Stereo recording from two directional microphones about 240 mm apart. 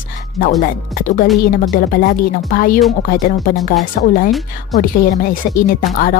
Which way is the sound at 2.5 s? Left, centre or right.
Left.